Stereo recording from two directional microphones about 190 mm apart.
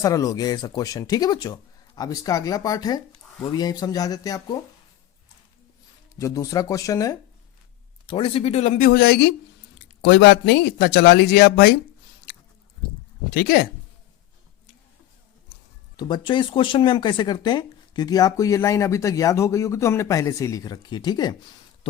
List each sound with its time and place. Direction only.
0.0 s speech: 20° left (ahead or behind)
6.1 s speech: 15° left (ahead or behind)
8.0 s speech: 30° left (ahead or behind)
8.9 s speech: 60° left (ahead or behind)
13.3 s speech: 55° left (ahead or behind)
16.0 s speech: 25° left (ahead or behind)